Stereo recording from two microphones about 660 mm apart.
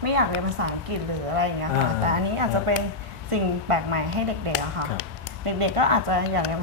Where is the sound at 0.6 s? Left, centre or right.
Right.